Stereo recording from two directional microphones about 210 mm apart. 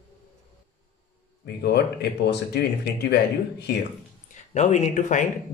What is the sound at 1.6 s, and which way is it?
Speech, 50° left (ahead or behind).